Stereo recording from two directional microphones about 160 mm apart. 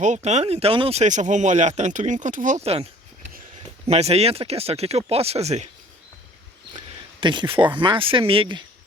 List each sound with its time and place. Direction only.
0.0 s speech: 45° right (ahead or behind)
3.8 s speech: 40° right (ahead or behind)
6.7 s speech: 30° right (ahead or behind)